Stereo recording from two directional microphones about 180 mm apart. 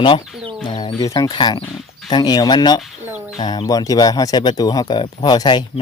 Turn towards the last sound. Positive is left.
turn(degrees=25)  # may be behind; listen again after turning